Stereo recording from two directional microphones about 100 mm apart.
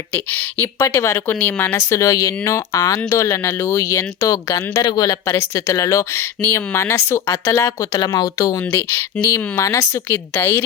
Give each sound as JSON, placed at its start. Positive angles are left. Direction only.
{"t": 0.1, "sound": "speech", "side_deg": 15}
{"t": 0.9, "sound": "speech", "side_deg": 25}
{"t": 1.9, "sound": "speech", "side_deg": 30}
{"t": 5.2, "sound": "speech", "side_deg": 25}
{"t": 6.7, "sound": "speech", "side_deg": 30}
{"t": 9.1, "sound": "speech", "side_deg": 15}
{"t": 9.6, "sound": "speech", "side_deg": 35}
{"t": 10.1, "sound": "speech", "side_deg": 20}